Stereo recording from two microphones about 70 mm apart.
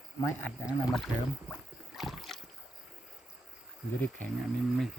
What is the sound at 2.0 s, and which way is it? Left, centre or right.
Rowboat, centre.